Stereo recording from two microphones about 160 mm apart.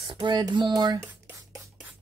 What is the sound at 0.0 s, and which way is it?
Speech, 30° right (ahead or behind).